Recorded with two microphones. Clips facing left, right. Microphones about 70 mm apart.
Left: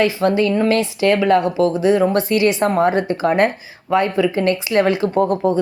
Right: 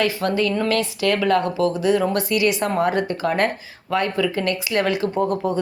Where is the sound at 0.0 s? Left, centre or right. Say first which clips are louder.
Left 5 dB; left.